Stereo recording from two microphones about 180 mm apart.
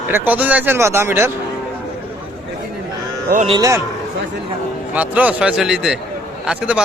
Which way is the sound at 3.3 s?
50° right (ahead or behind).